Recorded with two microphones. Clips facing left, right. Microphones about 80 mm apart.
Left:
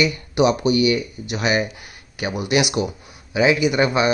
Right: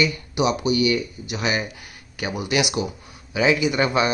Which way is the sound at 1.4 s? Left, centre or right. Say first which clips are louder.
Left 4 dB; centre.